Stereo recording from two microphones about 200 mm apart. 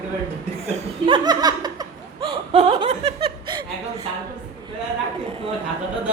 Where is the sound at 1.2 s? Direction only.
20° right (ahead or behind).